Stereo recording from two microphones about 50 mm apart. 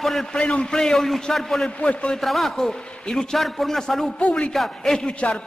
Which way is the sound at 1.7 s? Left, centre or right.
Left.